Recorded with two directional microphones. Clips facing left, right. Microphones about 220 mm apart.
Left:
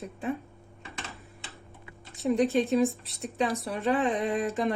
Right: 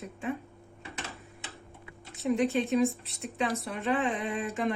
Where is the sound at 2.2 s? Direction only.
35° left (ahead or behind).